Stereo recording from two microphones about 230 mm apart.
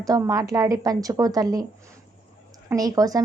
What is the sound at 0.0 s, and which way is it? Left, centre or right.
A woman's voice, centre.